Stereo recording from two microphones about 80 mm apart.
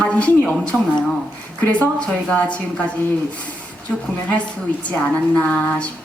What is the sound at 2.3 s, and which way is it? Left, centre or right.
Speech, centre.